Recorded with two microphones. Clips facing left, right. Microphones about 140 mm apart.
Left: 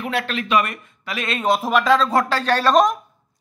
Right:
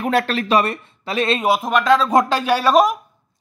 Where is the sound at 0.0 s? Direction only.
45° right (ahead or behind).